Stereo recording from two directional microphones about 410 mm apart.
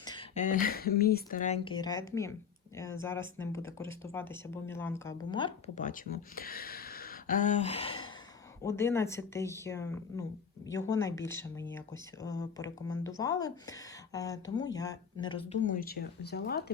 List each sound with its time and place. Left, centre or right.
0.0 s speech: centre